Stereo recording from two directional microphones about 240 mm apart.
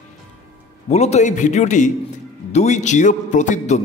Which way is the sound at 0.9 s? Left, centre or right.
Left.